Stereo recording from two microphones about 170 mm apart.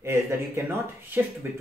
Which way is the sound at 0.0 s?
15° right (ahead or behind).